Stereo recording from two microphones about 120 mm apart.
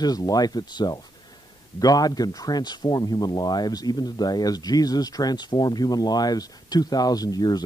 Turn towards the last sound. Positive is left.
turn(degrees=35)  # may be behind; listen again after turning